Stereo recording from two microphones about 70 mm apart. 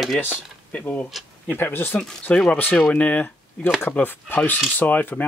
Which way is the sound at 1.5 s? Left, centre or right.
Left.